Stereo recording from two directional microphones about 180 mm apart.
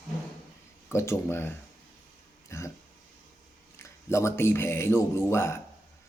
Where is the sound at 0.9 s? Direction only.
15° left (ahead or behind).